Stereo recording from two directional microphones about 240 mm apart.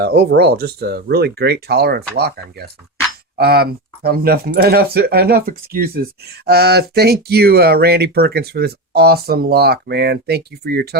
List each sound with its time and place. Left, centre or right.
0.0 s speech: right